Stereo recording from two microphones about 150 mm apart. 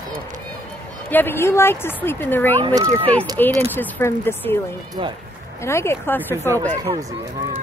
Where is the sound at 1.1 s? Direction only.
15° left (ahead or behind).